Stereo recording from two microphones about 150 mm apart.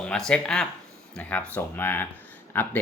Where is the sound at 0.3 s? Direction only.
5° left (ahead or behind).